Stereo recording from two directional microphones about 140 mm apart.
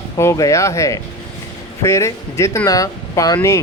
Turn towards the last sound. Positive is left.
turn(degrees=25)  # may be behind; listen again after turning